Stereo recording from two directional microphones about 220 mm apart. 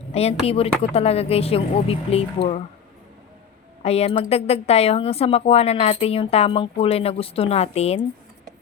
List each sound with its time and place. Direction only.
0.1 s a woman's voice: 30° left (ahead or behind)
3.8 s a woman's voice: 30° left (ahead or behind)